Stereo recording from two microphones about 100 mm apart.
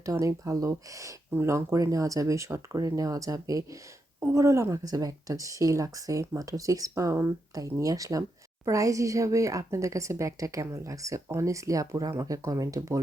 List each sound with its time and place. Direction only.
0.0 s speech: 35° right (ahead or behind)